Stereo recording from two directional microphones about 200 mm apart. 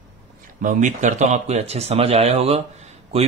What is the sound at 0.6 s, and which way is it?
Speech, 40° right (ahead or behind).